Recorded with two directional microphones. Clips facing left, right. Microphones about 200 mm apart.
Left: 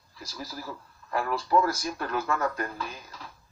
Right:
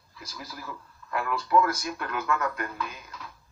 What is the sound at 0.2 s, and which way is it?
Speech, 35° left (ahead or behind).